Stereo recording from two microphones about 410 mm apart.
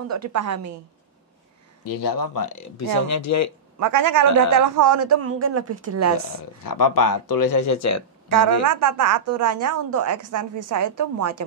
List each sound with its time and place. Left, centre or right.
0.1 s a woman's voice: right
1.9 s speech: left
3.8 s a woman's voice: right
6.6 s speech: left
8.6 s a woman's voice: right